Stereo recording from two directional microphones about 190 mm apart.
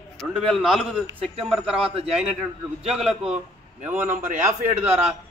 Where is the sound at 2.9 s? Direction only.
5° right (ahead or behind).